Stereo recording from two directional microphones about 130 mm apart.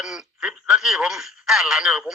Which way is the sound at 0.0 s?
5° right (ahead or behind).